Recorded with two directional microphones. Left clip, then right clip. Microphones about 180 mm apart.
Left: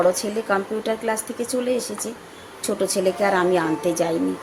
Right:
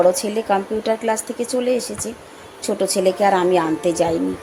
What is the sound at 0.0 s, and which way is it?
Speech, 10° right (ahead or behind).